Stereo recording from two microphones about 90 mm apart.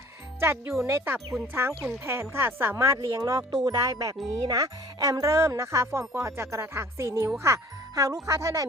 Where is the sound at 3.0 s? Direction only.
40° right (ahead or behind).